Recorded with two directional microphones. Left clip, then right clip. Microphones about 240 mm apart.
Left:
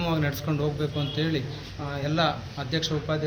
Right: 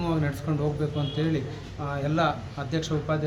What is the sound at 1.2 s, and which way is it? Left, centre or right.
A man's voice, centre.